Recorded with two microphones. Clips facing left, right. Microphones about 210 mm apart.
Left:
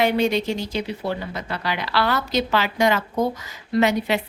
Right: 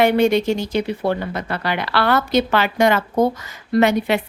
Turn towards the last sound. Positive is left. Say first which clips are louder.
# right 3 dB
turn(degrees=-55)  # may be behind; listen again after turning